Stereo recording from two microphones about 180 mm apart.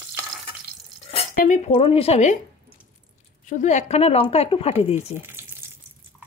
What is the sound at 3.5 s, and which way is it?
A woman's voice, 40° left (ahead or behind).